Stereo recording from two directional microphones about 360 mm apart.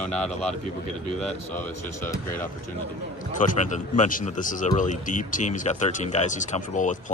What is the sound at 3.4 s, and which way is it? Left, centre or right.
A man's voice, left.